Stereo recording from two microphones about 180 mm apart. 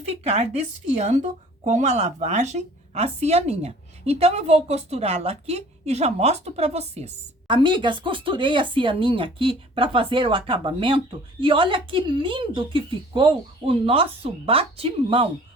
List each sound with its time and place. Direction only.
0.0 s speech: 35° right (ahead or behind)